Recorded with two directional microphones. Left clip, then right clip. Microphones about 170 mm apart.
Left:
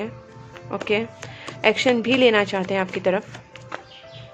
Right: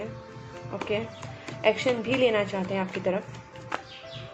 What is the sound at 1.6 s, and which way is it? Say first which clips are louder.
A woman's voice: left 5 dB; 50° left (ahead or behind).